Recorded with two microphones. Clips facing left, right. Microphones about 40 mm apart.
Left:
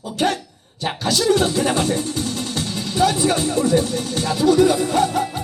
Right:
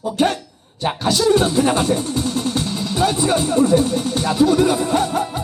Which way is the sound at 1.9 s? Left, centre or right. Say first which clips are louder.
Right 3 dB; right.